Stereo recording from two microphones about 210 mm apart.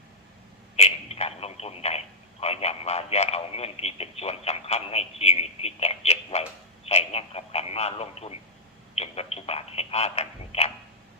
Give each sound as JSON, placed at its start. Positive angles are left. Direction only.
{"t": 0.8, "sound": "speech", "side_deg": 30}